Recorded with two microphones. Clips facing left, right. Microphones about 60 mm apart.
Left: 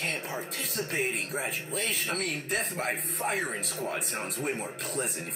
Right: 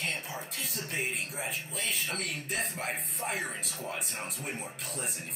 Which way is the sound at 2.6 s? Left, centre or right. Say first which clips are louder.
Left 2 dB; left.